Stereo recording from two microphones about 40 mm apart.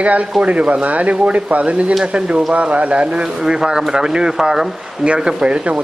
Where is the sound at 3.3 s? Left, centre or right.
Centre.